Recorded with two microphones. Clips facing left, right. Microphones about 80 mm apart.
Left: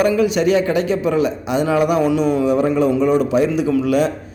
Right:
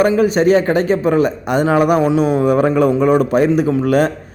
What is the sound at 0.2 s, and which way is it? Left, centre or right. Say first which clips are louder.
A man's voice: right 3 dB; right.